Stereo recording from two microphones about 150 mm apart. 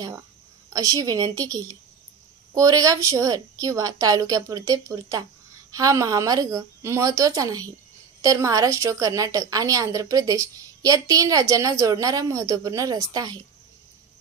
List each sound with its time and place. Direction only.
0.7 s a woman's voice: 25° right (ahead or behind)